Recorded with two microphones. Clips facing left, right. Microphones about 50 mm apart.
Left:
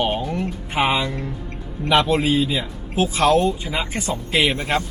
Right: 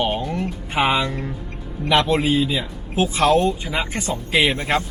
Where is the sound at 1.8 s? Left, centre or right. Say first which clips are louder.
Even; centre.